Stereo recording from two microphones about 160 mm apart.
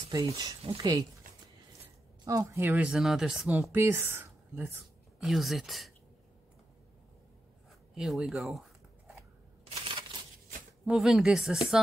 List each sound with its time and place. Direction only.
0.1 s speech: 25° right (ahead or behind)
2.2 s speech: 20° right (ahead or behind)
2.9 s speech: 5° right (ahead or behind)
5.2 s speech: centre (ahead or behind)
7.9 s zipper: centre (ahead or behind)
9.7 s a sound: 30° right (ahead or behind)
10.9 s speech: centre (ahead or behind)